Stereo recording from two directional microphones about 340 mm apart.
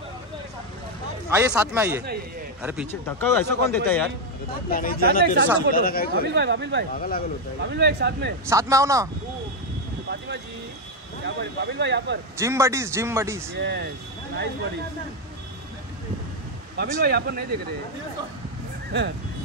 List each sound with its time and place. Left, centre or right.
1.3 s speech: centre
4.6 s speech: left
5.2 s speech: right
5.7 s speech: left
6.2 s speech: right
7.0 s speech: left
7.6 s speech: right
8.5 s speech: centre
10.0 s a sound: right
11.2 s speech: right
12.4 s speech: centre
13.6 s speech: right
16.7 s speech: right
18.9 s speech: right